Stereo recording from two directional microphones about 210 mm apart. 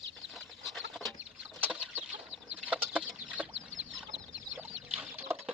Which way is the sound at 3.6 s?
65° right (ahead or behind).